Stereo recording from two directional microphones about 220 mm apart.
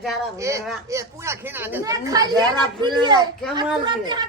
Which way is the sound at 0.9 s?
10° right (ahead or behind).